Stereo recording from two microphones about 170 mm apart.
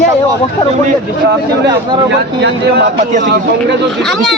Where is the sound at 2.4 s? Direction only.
90° right.